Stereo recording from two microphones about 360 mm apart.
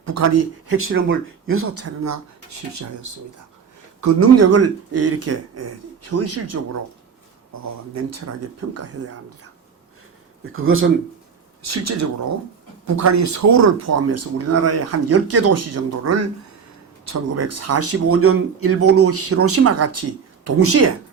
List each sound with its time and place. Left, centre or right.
0.0 s speech: right
7.9 s speech: right
10.5 s speech: right
11.6 s speech: right